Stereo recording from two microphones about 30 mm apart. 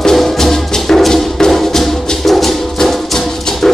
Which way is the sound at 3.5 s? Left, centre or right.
Left.